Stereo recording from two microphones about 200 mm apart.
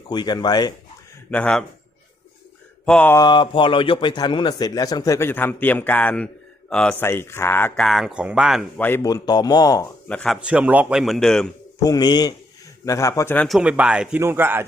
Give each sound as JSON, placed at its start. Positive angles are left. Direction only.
{"t": 0.1, "sound": "a man's voice", "side_deg": 20}
{"t": 1.3, "sound": "speech", "side_deg": 5}
{"t": 2.8, "sound": "a man's voice", "side_deg": 5}
{"t": 3.2, "sound": "a man's voice", "side_deg": 25}
{"t": 8.8, "sound": "a man's voice", "side_deg": 15}
{"t": 10.1, "sound": "speech", "side_deg": 5}
{"t": 10.4, "sound": "speech", "side_deg": -5}
{"t": 11.8, "sound": "a man's voice", "side_deg": 20}
{"t": 13.6, "sound": "speech", "side_deg": -5}